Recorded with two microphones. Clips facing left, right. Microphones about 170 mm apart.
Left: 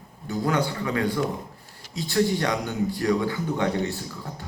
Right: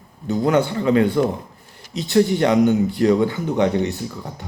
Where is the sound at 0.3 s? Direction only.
25° right (ahead or behind).